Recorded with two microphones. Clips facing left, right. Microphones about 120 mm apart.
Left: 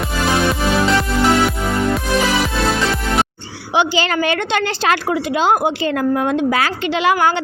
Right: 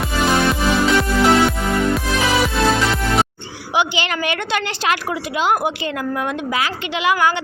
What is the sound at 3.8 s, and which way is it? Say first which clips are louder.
A woman's voice: left 4 dB; 35° left (ahead or behind).